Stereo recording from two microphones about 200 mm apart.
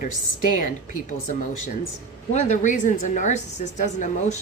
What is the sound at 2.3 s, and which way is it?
Speech, 35° left (ahead or behind).